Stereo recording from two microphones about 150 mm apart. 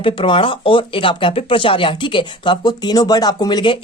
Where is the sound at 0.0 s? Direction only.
35° left (ahead or behind).